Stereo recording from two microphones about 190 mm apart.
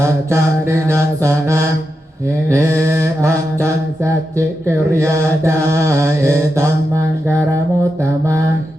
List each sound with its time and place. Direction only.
0.0 s mantra: 15° right (ahead or behind)